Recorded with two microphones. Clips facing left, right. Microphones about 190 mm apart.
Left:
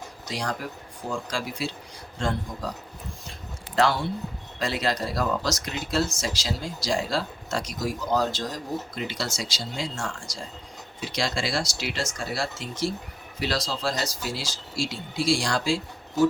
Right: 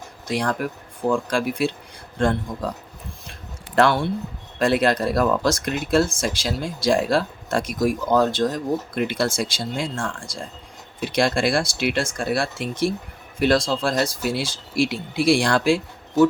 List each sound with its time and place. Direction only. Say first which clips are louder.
0.3 s speech: right 7 dB; 55° right (ahead or behind)
3.8 s speech: right 5 dB; 55° right (ahead or behind)